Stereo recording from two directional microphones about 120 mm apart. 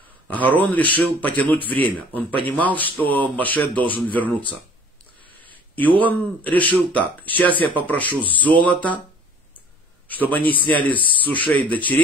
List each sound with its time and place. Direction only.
0.5 s speech: 15° left (ahead or behind)
5.8 s speech: 15° left (ahead or behind)
10.0 s a man's voice: 15° left (ahead or behind)